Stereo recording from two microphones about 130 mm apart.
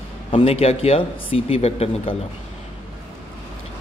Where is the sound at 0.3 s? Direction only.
50° left (ahead or behind).